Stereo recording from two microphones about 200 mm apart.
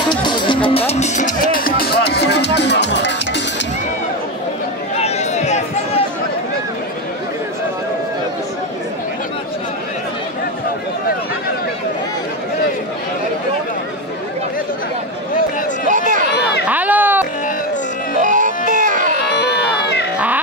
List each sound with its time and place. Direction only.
0.1 s speech: 20° left (ahead or behind); by 3.4 s 60° left (ahead or behind)
4.9 s a sound: 30° left (ahead or behind)
15.9 s run: 40° right (ahead or behind)
16.6 s run: 10° right (ahead or behind)
18.2 s music: 40° right (ahead or behind)